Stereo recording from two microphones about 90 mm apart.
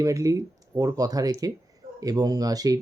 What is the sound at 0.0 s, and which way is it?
Speech, 35° right (ahead or behind).